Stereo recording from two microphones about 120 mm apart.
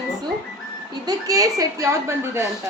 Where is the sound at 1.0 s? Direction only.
30° right (ahead or behind).